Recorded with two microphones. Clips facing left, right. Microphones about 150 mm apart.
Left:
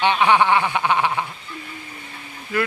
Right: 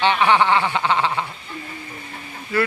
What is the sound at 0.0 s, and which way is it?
A man's voice, 15° left (ahead or behind).